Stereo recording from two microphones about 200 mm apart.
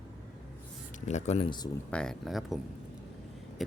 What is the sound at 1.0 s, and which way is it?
Speech, 35° left (ahead or behind).